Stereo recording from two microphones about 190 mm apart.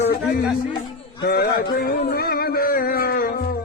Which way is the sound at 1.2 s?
55° left (ahead or behind).